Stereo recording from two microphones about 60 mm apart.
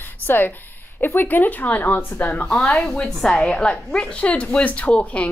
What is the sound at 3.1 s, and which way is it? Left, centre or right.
Speech, centre.